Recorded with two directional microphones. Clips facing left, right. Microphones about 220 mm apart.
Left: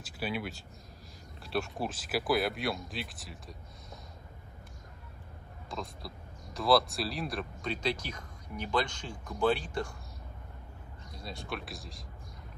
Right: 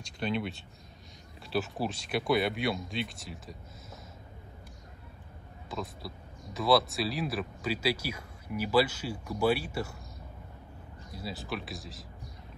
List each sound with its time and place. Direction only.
0.0 s speech: 5° left (ahead or behind)
5.7 s speech: centre (ahead or behind)
11.1 s speech: 5° right (ahead or behind)